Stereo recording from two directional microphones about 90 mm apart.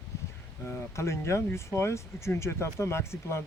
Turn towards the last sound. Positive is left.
turn(degrees=30)  # may be behind; listen again after turning